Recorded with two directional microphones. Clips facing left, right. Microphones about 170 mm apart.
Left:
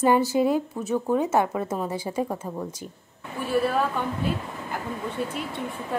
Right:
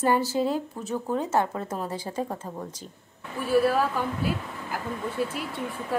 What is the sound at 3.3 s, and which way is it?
Speech, centre (ahead or behind).